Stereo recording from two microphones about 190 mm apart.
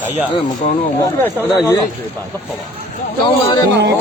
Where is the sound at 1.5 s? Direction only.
15° left (ahead or behind).